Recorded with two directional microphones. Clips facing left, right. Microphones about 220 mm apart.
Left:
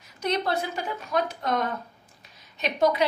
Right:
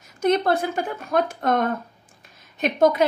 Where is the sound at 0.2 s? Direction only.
50° right (ahead or behind).